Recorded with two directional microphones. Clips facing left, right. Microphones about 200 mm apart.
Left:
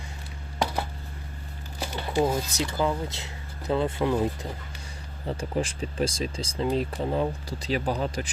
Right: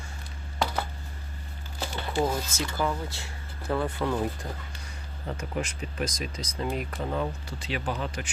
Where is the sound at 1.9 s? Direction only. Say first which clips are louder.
Left 3 dB; 10° left (ahead or behind).